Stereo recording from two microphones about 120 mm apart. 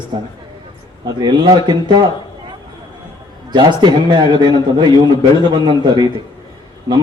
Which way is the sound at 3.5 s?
40° right (ahead or behind).